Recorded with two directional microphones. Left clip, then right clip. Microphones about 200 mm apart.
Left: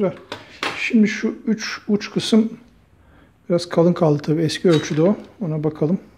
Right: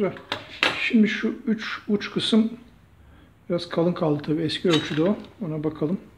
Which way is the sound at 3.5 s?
45° left (ahead or behind).